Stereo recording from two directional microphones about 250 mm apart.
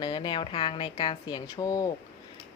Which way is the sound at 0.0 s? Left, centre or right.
Centre.